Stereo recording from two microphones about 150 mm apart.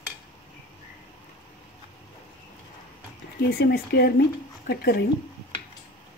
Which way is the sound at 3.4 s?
90° left.